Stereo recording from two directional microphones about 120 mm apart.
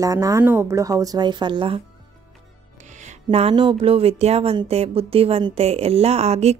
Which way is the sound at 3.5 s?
40° right (ahead or behind).